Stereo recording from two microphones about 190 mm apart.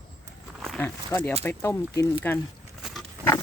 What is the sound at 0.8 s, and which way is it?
Speech, 10° left (ahead or behind).